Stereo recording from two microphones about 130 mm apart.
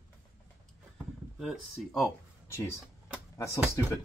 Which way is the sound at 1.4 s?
Centre (ahead or behind).